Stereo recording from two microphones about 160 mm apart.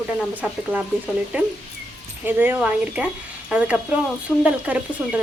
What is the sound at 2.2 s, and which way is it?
A woman's voice, 10° right (ahead or behind).